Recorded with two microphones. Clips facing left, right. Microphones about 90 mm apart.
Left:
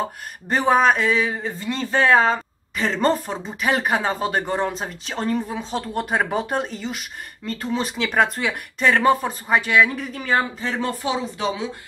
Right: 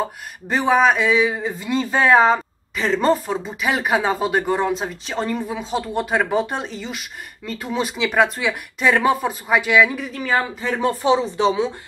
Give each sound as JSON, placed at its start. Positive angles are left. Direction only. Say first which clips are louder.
{"t": 0.5, "sound": "speech", "louder": "right 1 dB", "side_deg": 0}
{"t": 10.8, "sound": "speech", "louder": "right 8 dB", "side_deg": -20}